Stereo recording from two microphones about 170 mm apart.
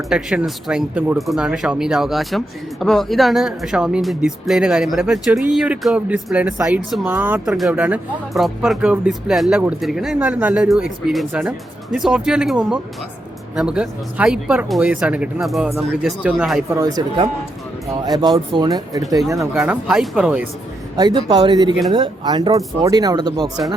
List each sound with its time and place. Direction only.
0.1 s speech: 5° right (ahead or behind)
16.6 s speech: 20° right (ahead or behind)
19.5 s speech: 5° right (ahead or behind)
20.9 s speech: 25° right (ahead or behind)